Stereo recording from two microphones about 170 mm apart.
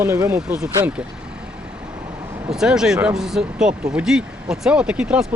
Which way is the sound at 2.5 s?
5° right (ahead or behind).